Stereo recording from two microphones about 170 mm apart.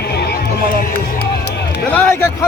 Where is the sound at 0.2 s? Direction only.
70° left (ahead or behind).